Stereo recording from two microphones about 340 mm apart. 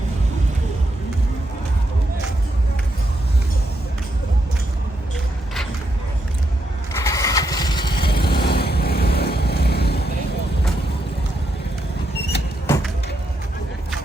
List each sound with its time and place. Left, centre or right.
6.9 s vehicle: centre
8.1 s vehicle: left
12.6 s vehicle: centre